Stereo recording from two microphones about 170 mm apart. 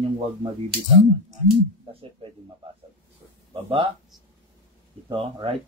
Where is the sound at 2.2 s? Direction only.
35° right (ahead or behind).